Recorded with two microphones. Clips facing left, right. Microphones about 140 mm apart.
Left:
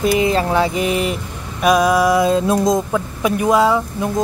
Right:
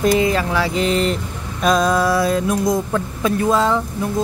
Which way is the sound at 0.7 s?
10° left (ahead or behind).